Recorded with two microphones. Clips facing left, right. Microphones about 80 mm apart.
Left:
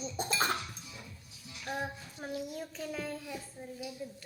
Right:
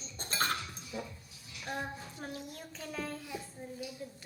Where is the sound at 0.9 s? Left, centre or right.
Right.